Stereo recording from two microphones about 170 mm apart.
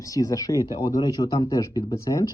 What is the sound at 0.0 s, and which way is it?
Speech, 20° left (ahead or behind).